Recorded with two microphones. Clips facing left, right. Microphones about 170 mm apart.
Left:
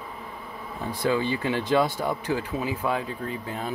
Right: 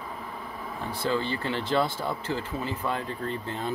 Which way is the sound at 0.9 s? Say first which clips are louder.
Left 4 dB; 15° left (ahead or behind).